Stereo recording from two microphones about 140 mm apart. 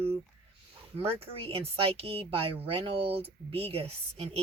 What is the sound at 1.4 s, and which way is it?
Speech, 45° right (ahead or behind).